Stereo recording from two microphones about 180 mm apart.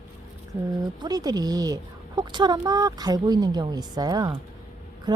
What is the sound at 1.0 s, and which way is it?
Speech, 20° right (ahead or behind).